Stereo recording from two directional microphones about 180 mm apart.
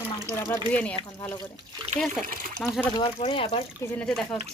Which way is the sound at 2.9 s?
30° left (ahead or behind).